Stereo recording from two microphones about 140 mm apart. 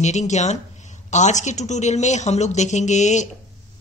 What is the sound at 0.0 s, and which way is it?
Speech, 55° left (ahead or behind).